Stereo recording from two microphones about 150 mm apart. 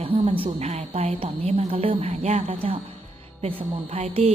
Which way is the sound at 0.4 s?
45° right (ahead or behind).